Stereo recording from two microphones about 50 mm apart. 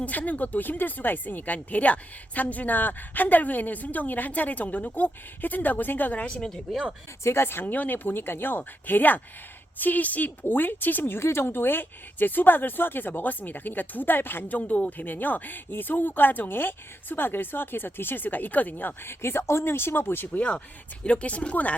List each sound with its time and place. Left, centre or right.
0.0 s speech: left
6.1 s speech: left
7.4 s speech: left
11.2 s speech: left
19.0 s speech: left